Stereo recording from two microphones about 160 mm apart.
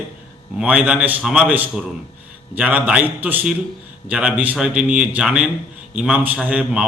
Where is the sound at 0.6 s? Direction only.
10° right (ahead or behind).